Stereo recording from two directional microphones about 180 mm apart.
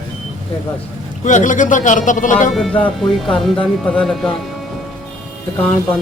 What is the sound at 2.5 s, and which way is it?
Speech, 5° left (ahead or behind).